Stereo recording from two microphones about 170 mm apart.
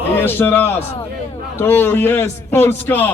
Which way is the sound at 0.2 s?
10° left (ahead or behind).